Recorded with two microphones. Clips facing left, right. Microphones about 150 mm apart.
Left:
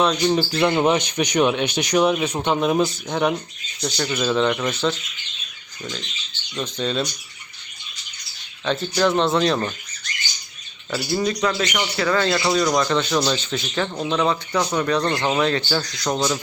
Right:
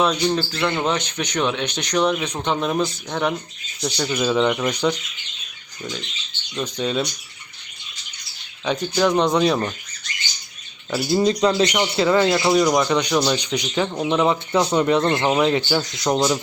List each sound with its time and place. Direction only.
0.0 s speech: centre (ahead or behind)
0.3 s speech: 15° left (ahead or behind)
3.8 s speech: 10° right (ahead or behind)
6.6 s speech: 10° right (ahead or behind)
8.6 s speech: 10° right (ahead or behind)
10.9 s speech: 25° right (ahead or behind)